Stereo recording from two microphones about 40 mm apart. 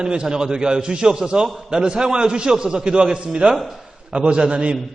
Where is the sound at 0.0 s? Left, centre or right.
Right.